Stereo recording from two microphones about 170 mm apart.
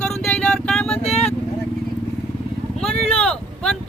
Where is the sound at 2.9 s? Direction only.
35° left (ahead or behind).